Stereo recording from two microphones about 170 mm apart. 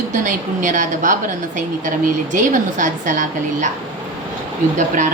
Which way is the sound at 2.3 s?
50° right (ahead or behind).